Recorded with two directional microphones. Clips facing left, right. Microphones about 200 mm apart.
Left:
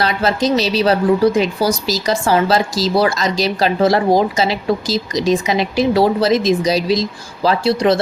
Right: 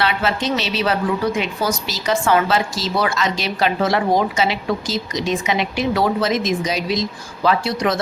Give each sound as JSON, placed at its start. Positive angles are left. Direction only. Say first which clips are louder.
{"t": 0.0, "sound": "a woman's voice", "louder": "left 4 dB", "side_deg": 40}